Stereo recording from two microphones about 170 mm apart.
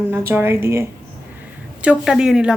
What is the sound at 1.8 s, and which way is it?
Speech, 5° right (ahead or behind).